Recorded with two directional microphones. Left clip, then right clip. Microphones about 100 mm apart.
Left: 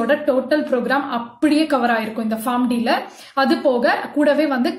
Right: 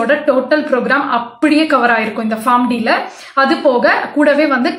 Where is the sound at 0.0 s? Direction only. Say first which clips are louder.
Right 5 dB; 30° left (ahead or behind).